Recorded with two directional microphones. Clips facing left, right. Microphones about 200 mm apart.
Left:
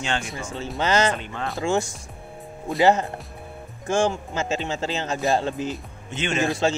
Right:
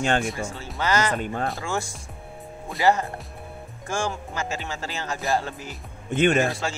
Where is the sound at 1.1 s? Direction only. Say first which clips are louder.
Right 4 dB; 45° right (ahead or behind).